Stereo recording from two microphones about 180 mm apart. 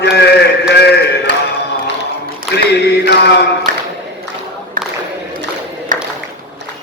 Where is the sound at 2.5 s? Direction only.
65° left (ahead or behind).